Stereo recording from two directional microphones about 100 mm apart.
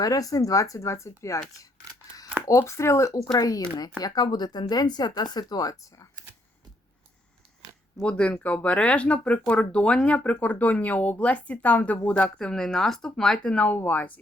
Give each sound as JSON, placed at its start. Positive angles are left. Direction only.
{"t": 0.0, "sound": "speech", "side_deg": 35}
{"t": 2.5, "sound": "speech", "side_deg": 30}
{"t": 8.0, "sound": "speech", "side_deg": 10}